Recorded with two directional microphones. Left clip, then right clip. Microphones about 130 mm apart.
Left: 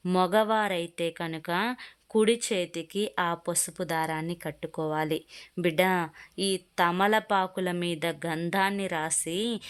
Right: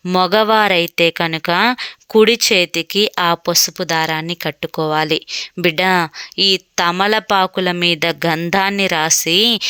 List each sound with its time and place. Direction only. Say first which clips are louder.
0.0 s speech: right 11 dB; 30° right (ahead or behind)